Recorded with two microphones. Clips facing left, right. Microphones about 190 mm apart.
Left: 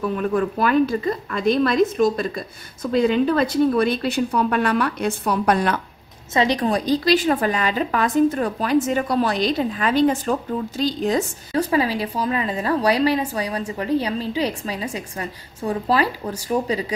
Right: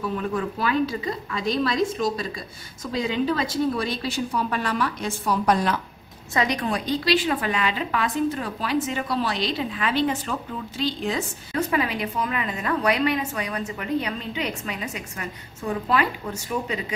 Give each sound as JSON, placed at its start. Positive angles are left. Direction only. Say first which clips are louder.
{"t": 0.3, "sound": "a woman's voice", "louder": "left 7 dB", "side_deg": 55}
{"t": 6.3, "sound": "a woman's voice", "louder": "left 5 dB", "side_deg": 30}